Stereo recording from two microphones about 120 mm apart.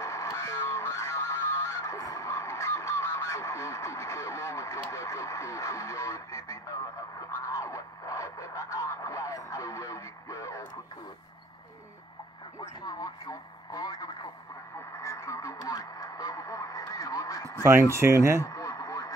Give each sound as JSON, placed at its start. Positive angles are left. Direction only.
{"t": 0.0, "sound": "music", "side_deg": 25}
{"t": 4.9, "sound": "speech", "side_deg": 25}
{"t": 7.4, "sound": "radio", "side_deg": 25}
{"t": 12.8, "sound": "radio", "side_deg": 35}
{"t": 17.6, "sound": "speech", "side_deg": -20}
{"t": 18.4, "sound": "radio", "side_deg": 30}